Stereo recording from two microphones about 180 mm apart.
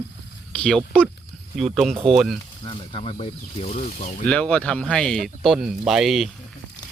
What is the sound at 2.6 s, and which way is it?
Speech, 30° left (ahead or behind).